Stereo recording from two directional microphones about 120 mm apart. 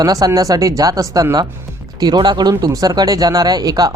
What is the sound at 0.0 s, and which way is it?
Speech, 30° right (ahead or behind).